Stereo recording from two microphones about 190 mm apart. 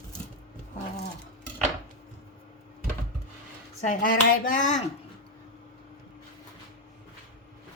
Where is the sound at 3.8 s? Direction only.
45° left (ahead or behind).